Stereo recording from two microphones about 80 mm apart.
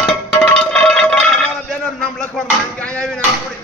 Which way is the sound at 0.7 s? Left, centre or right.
Centre.